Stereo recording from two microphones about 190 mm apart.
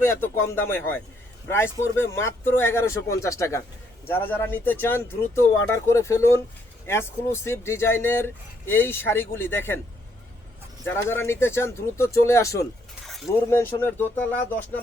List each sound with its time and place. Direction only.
0.0 s speech: 10° left (ahead or behind)
10.8 s speech: 15° left (ahead or behind)